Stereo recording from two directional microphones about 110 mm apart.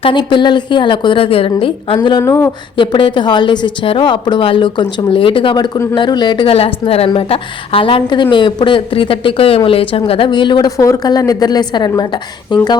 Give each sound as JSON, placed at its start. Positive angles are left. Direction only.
{"t": 0.0, "sound": "a woman's voice", "side_deg": 50}
{"t": 2.2, "sound": "speech", "side_deg": 20}
{"t": 2.7, "sound": "a woman's voice", "side_deg": 50}
{"t": 10.8, "sound": "a woman's voice", "side_deg": 30}